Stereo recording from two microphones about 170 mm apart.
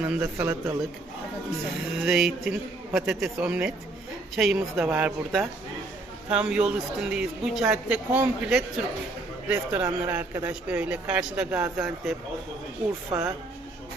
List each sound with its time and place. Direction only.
0.0 s speech: 5° right (ahead or behind)
2.0 s speech: 5° right (ahead or behind)